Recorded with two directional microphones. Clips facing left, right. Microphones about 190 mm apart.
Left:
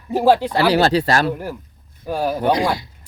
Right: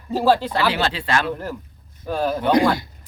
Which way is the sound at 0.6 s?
40° left (ahead or behind).